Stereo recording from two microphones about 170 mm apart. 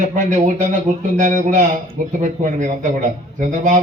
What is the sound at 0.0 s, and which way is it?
A man's voice, 45° right (ahead or behind).